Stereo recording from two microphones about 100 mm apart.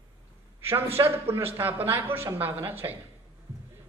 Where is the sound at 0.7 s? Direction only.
70° right (ahead or behind).